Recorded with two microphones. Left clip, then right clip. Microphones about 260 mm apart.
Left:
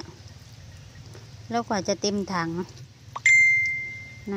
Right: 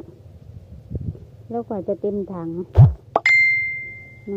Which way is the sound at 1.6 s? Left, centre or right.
Left.